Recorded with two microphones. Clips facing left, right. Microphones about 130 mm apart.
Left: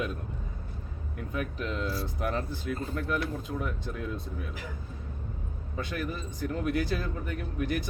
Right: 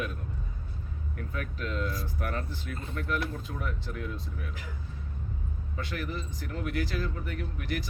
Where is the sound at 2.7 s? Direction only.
35° left (ahead or behind).